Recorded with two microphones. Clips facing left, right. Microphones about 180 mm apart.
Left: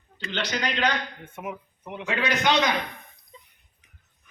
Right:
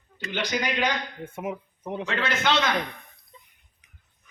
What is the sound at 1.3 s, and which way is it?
Speech, 30° right (ahead or behind).